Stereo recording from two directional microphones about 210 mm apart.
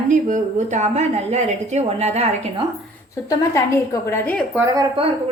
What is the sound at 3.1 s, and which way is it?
A woman's voice, 15° left (ahead or behind).